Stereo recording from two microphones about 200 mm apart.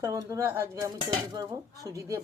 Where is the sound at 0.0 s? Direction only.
15° right (ahead or behind).